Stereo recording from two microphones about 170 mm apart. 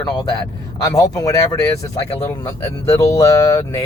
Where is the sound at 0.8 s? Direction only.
20° left (ahead or behind).